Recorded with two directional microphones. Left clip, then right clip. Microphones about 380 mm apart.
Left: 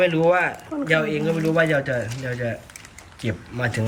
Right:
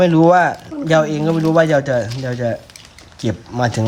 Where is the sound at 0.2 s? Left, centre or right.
Left.